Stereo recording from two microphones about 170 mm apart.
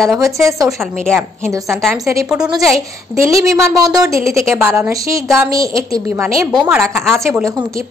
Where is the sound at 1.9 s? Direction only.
20° right (ahead or behind).